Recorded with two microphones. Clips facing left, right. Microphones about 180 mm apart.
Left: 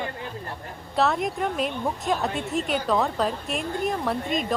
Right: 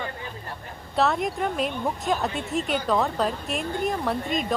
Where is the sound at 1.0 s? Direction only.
Centre (ahead or behind).